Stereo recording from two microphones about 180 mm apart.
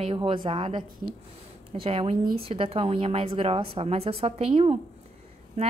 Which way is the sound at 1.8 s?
30° right (ahead or behind).